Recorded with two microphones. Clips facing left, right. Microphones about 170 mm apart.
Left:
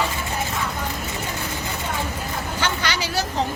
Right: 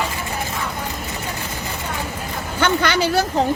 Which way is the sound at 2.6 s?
55° right (ahead or behind).